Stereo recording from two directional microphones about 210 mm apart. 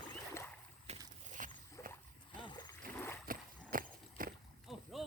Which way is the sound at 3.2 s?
40° right (ahead or behind).